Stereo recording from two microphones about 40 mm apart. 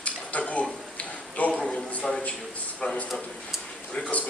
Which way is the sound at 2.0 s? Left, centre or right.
Centre.